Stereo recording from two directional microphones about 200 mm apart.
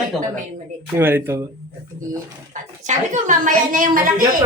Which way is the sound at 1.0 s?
10° right (ahead or behind).